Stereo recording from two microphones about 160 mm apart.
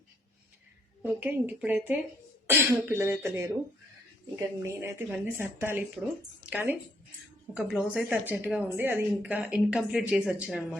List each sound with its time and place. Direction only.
1.0 s speech: 10° right (ahead or behind)